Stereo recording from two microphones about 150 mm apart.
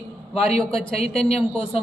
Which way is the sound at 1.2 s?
40° left (ahead or behind).